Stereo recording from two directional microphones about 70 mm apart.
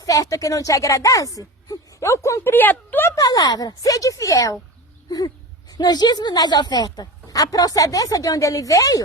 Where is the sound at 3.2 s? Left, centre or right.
Left.